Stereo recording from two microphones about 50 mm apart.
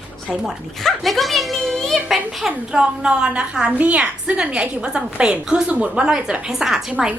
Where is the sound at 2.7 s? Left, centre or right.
Centre.